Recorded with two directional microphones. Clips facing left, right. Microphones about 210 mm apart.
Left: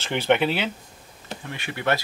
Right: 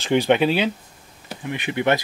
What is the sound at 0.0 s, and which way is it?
Speech, 15° right (ahead or behind).